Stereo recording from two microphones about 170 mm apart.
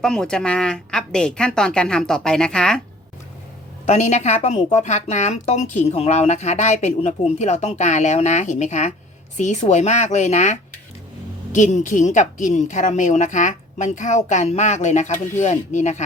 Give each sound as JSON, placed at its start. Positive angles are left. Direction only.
{"t": 0.0, "sound": "speech", "side_deg": 5}
{"t": 3.8, "sound": "a woman's voice", "side_deg": 40}